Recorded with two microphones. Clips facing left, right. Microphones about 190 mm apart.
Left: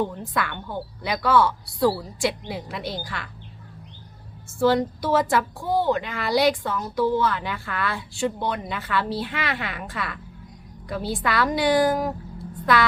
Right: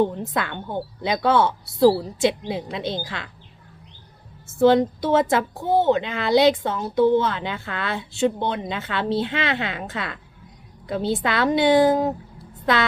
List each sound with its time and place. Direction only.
0.0 s a woman's voice: 20° right (ahead or behind)
4.6 s a woman's voice: 20° right (ahead or behind)